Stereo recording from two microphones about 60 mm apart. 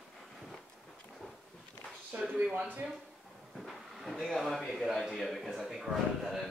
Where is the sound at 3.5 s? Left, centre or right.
Centre.